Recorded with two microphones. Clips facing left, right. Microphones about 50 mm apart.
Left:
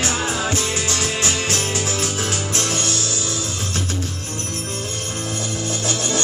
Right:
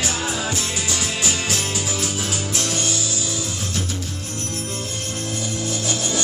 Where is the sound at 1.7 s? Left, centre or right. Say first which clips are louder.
Left 3 dB; left.